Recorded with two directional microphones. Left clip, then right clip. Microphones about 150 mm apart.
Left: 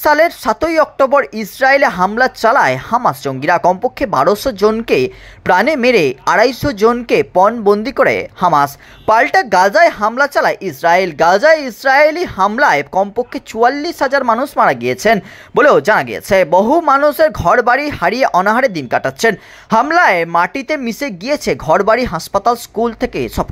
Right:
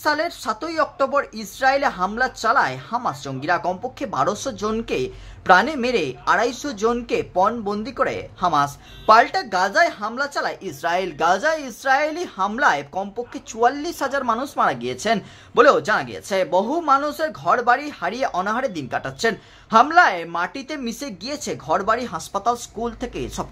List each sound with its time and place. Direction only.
0.0 s a woman's voice: 45° left (ahead or behind)